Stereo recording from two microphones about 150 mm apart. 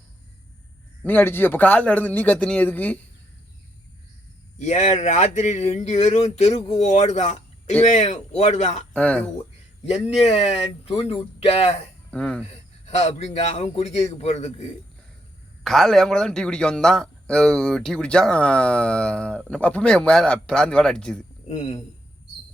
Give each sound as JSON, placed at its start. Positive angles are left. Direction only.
{"t": 1.0, "sound": "a man's voice", "side_deg": 15}
{"t": 4.5, "sound": "speech", "side_deg": 50}
{"t": 8.9, "sound": "speech", "side_deg": 10}
{"t": 9.8, "sound": "speech", "side_deg": 45}
{"t": 12.1, "sound": "a man's voice", "side_deg": 5}
{"t": 12.5, "sound": "a man's voice", "side_deg": 45}
{"t": 15.6, "sound": "a man's voice", "side_deg": 0}
{"t": 21.5, "sound": "speech", "side_deg": 45}